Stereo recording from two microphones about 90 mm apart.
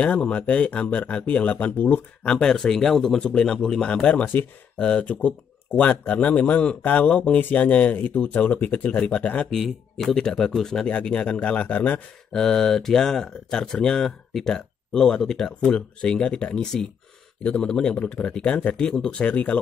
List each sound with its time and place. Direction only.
0.0 s speech: 15° left (ahead or behind)
9.5 s speech: centre (ahead or behind)